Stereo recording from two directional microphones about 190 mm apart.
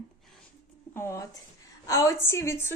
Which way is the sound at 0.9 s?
15° left (ahead or behind).